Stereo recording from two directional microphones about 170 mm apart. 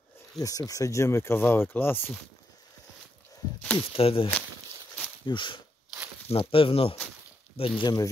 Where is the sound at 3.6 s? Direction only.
5° left (ahead or behind).